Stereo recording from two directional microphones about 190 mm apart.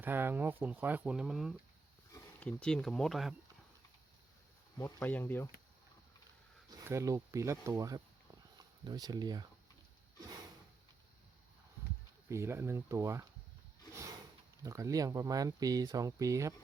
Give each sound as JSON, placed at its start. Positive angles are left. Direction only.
{"t": 0.0, "sound": "speech", "side_deg": -10}
{"t": 4.8, "sound": "speech", "side_deg": 10}
{"t": 6.7, "sound": "speech", "side_deg": -15}
{"t": 12.3, "sound": "speech", "side_deg": -15}
{"t": 14.6, "sound": "speech", "side_deg": -15}